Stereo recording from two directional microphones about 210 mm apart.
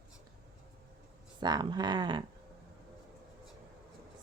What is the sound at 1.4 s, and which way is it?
Speech, 20° right (ahead or behind).